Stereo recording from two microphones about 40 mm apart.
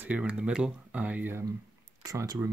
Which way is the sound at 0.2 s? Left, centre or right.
Right.